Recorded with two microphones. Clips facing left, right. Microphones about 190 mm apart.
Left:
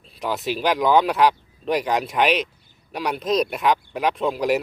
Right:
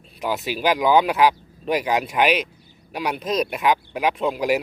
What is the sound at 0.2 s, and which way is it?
Speech, centre (ahead or behind).